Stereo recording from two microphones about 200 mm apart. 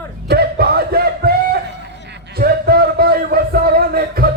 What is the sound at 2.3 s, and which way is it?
Music, 50° right (ahead or behind).